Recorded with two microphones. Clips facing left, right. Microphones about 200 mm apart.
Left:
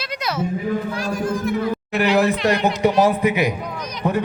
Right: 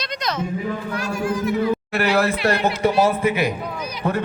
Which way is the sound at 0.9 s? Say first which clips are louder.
Left 1 dB; 40° left (ahead or behind).